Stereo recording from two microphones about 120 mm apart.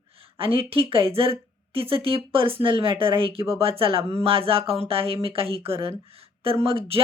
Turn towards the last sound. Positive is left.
turn(degrees=-50)  # may be behind; listen again after turning